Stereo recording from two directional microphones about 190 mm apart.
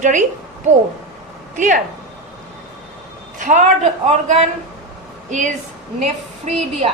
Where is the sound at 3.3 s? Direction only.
40° right (ahead or behind).